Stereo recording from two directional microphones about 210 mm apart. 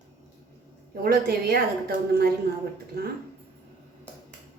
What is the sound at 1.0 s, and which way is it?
A woman's voice, 45° right (ahead or behind).